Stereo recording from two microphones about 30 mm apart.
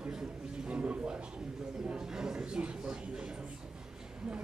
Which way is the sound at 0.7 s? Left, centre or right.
Right.